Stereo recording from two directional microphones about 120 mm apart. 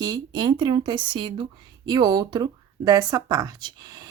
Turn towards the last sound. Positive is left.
turn(degrees=-35)  # may be behind; listen again after turning